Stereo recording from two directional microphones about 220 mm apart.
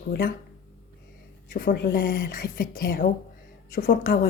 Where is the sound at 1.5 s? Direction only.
45° left (ahead or behind).